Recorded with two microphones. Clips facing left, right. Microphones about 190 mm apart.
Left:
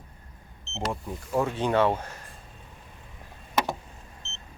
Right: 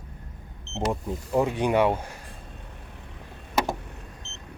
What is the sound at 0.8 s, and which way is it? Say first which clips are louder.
Speech: right 4 dB; 15° right (ahead or behind).